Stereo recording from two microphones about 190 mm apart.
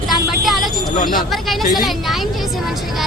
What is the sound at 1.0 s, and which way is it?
Speech, 45° left (ahead or behind).